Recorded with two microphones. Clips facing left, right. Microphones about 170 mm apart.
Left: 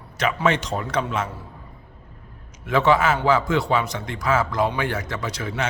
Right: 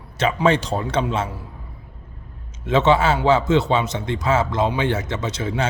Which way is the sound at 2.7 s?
25° right (ahead or behind).